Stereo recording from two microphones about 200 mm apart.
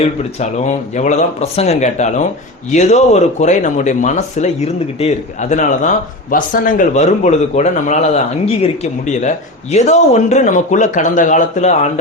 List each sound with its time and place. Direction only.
0.3 s speech: 35° left (ahead or behind)